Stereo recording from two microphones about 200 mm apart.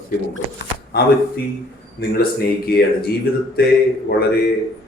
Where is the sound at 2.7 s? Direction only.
50° left (ahead or behind).